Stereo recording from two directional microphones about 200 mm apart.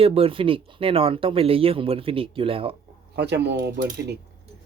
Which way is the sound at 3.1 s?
55° right (ahead or behind).